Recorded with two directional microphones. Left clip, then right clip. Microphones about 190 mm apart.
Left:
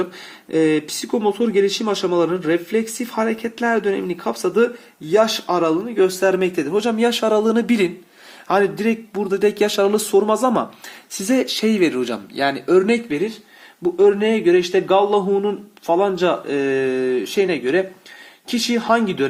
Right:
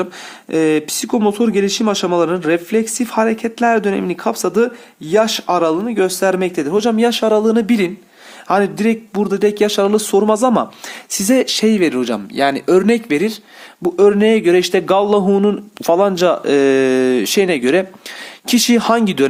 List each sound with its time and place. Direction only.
0.5 s speech: 35° right (ahead or behind)